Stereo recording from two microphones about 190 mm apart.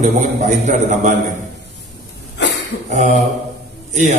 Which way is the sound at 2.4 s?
65° left (ahead or behind).